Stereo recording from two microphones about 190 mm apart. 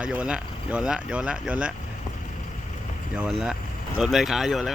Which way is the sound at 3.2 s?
Centre (ahead or behind).